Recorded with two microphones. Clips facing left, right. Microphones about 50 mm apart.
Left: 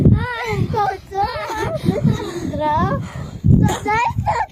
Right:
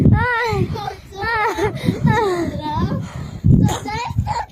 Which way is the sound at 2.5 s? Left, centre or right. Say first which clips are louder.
Left 5 dB; left.